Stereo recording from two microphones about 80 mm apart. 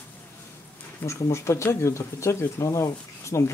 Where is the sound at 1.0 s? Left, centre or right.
Left.